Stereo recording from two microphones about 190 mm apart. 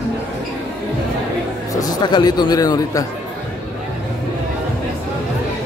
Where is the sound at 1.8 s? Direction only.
20° left (ahead or behind).